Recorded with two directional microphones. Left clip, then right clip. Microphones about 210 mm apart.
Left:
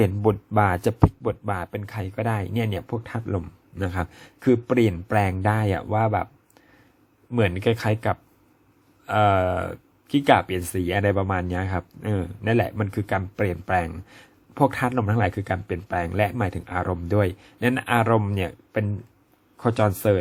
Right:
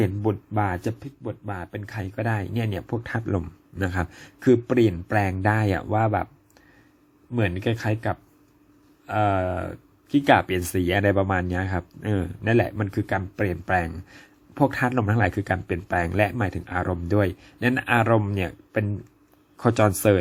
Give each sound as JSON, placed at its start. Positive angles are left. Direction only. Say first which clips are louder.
{"t": 0.0, "sound": "speech", "louder": "left 4 dB", "side_deg": 20}
{"t": 7.3, "sound": "speech", "louder": "left 4 dB", "side_deg": 15}
{"t": 9.0, "sound": "speech", "louder": "left 3 dB", "side_deg": 15}
{"t": 10.3, "sound": "speech", "louder": "right 1 dB", "side_deg": 0}